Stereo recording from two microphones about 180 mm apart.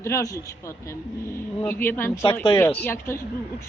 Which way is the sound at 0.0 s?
15° left (ahead or behind).